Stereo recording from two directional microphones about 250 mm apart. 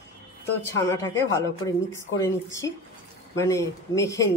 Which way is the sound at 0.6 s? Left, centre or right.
Centre.